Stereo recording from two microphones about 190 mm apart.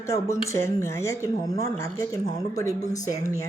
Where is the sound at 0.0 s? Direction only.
15° left (ahead or behind).